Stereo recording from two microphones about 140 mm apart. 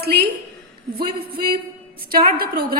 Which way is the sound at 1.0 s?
90° right.